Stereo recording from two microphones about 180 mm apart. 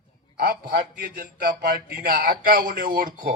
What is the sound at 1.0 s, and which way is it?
A man's voice, 55° right (ahead or behind).